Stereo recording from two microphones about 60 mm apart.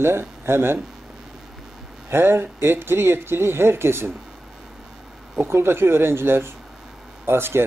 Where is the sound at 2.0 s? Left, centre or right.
Right.